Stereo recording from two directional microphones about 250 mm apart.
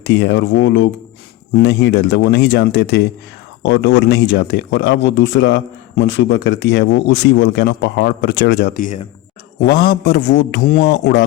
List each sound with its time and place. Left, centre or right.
0.0 s a man's voice: left
10.9 s speech: left